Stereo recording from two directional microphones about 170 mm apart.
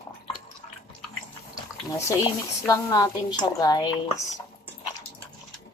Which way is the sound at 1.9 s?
15° left (ahead or behind).